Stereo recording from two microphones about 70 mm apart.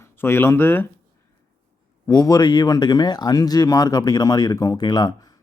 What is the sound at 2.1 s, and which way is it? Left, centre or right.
Speech, left.